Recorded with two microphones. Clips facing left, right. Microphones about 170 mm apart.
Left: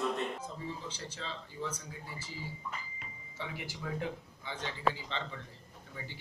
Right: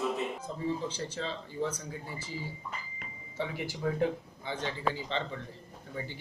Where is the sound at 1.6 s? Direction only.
55° right (ahead or behind).